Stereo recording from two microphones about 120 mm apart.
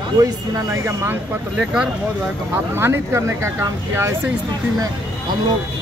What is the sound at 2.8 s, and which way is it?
Speech, 20° right (ahead or behind).